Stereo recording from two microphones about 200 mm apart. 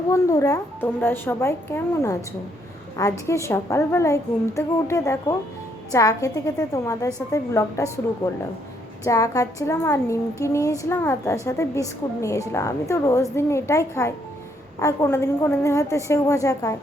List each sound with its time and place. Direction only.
0.1 s speech: 15° left (ahead or behind)